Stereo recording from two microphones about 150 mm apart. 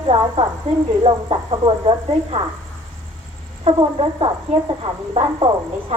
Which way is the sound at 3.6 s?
35° right (ahead or behind).